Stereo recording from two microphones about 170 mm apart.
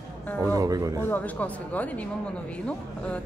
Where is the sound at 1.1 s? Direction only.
10° left (ahead or behind).